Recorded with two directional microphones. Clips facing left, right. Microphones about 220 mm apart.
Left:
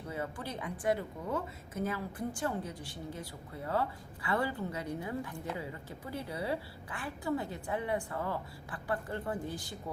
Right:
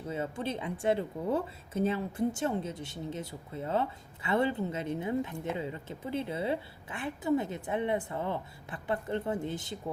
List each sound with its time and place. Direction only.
0.1 s speech: 25° right (ahead or behind)